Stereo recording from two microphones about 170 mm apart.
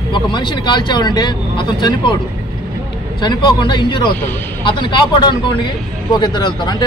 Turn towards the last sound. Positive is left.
turn(degrees=25)  # may be behind; listen again after turning